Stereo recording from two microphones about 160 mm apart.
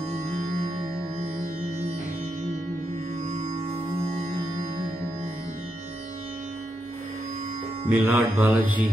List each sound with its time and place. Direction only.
3.3 s music: 45° right (ahead or behind)
7.9 s music: 10° right (ahead or behind)